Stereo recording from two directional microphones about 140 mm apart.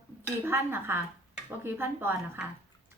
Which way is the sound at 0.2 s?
15° right (ahead or behind).